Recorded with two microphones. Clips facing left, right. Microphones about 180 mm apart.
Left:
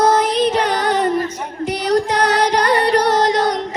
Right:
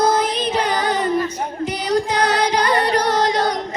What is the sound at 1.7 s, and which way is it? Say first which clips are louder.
Music: left 4 dB; 70° left (ahead or behind).